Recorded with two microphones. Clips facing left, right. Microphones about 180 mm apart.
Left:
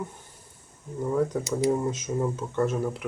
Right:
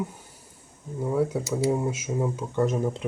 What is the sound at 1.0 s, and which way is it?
Speech, 10° right (ahead or behind).